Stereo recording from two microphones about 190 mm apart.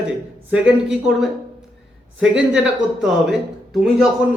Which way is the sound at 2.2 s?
5° right (ahead or behind).